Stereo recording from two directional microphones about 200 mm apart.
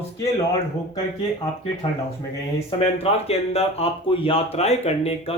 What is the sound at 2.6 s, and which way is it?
Speech, 30° left (ahead or behind).